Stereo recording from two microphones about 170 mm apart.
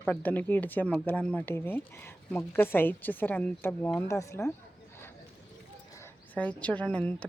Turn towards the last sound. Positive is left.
turn(degrees=10)  # may be behind; listen again after turning